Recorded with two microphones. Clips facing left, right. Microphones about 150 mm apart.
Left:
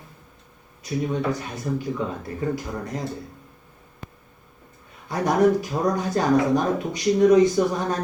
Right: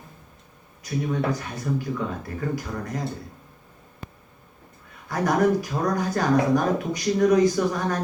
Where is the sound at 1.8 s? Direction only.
25° left (ahead or behind).